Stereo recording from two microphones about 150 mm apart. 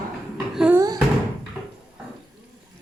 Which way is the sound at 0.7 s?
25° right (ahead or behind).